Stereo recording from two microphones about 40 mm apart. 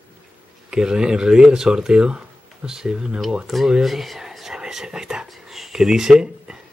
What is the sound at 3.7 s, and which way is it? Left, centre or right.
Whispering, centre.